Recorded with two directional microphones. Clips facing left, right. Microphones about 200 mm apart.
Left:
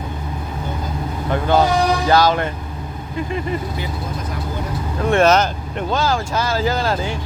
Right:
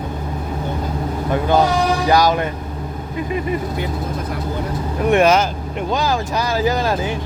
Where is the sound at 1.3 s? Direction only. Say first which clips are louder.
Even; 15° right (ahead or behind).